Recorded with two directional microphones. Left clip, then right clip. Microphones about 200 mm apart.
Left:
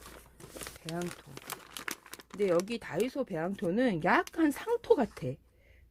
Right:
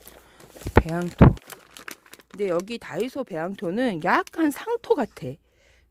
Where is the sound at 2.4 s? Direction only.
40° right (ahead or behind).